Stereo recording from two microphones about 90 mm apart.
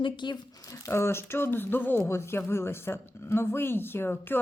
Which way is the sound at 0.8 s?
30° left (ahead or behind).